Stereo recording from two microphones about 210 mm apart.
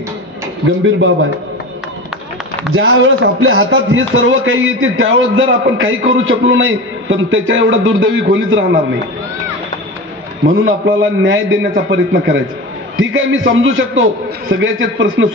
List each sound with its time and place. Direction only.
0.7 s a man's voice: 60° right (ahead or behind)
2.7 s speech: 65° right (ahead or behind)
11.0 s a man's voice: 65° right (ahead or behind)